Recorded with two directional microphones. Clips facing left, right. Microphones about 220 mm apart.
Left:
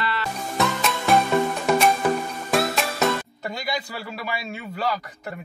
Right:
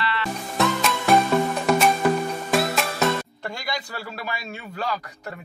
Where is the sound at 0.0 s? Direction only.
45° left (ahead or behind).